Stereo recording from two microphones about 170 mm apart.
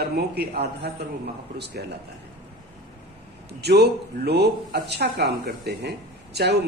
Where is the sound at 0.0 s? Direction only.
70° right (ahead or behind).